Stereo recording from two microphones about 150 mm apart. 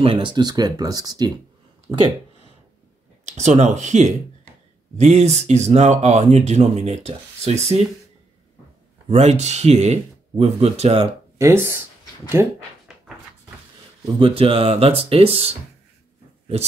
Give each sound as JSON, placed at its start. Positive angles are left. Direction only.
{"t": 0.0, "sound": "speech", "side_deg": -35}
{"t": 3.3, "sound": "speech", "side_deg": -50}
{"t": 9.1, "sound": "speech", "side_deg": -50}
{"t": 11.3, "sound": "speech", "side_deg": -15}
{"t": 14.0, "sound": "speech", "side_deg": -35}